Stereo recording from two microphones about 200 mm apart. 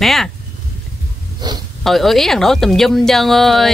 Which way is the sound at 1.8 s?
Centre (ahead or behind).